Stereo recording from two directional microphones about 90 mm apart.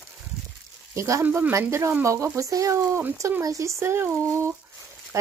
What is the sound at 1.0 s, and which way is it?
Speech, 35° right (ahead or behind).